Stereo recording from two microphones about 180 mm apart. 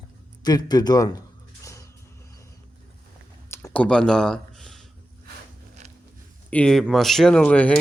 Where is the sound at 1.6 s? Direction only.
15° left (ahead or behind).